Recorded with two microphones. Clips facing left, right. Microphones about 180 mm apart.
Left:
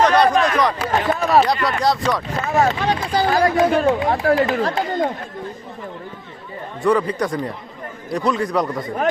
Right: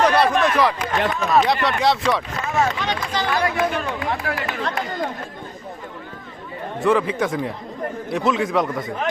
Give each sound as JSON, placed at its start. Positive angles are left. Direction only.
{"t": 0.0, "sound": "a sound", "side_deg": -5}
{"t": 0.9, "sound": "speech", "side_deg": 45}
{"t": 1.5, "sound": "a man's voice", "side_deg": 0}
{"t": 2.3, "sound": "speech", "side_deg": 35}
{"t": 6.8, "sound": "a man's voice", "side_deg": 0}